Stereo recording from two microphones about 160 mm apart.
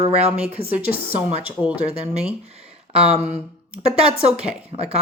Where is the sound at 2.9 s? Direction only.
40° right (ahead or behind).